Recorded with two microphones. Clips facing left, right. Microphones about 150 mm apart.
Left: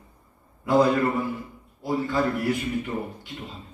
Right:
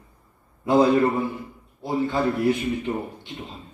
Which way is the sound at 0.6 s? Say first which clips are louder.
Right 2 dB; 20° right (ahead or behind).